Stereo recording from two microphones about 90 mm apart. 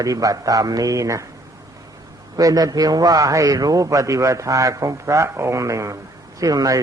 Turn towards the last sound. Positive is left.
turn(degrees=-40)  # may be behind; listen again after turning